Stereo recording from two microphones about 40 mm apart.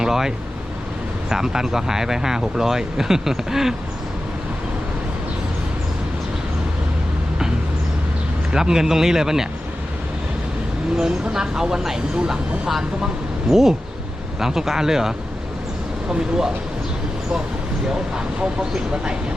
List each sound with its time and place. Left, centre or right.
0.0 s speech: centre
8.5 s speech: centre
10.9 s speech: centre
12.6 s speech: centre
17.8 s speech: centre